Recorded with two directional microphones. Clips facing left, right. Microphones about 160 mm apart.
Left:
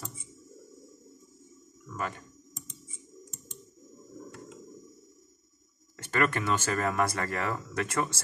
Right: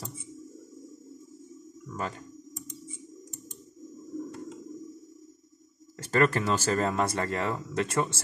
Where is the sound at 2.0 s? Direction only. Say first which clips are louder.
Right 1 dB; 30° right (ahead or behind).